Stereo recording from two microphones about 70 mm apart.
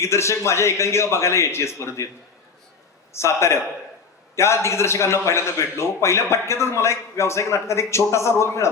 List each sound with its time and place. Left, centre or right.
0.0 s a man's voice: left
3.2 s a man's voice: left